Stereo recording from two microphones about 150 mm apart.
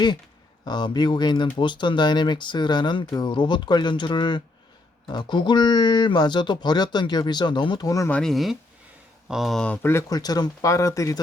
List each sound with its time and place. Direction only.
0.6 s speech: 30° left (ahead or behind)
8.1 s speech: centre (ahead or behind); by 11.2 s 20° left (ahead or behind)